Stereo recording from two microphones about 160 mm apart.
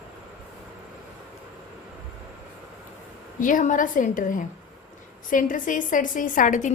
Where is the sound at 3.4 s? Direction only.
55° left (ahead or behind).